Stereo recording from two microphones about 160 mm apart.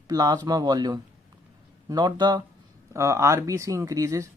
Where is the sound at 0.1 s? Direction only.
25° right (ahead or behind).